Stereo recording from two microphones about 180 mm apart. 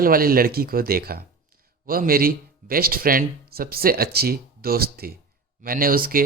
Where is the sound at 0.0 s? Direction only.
55° right (ahead or behind).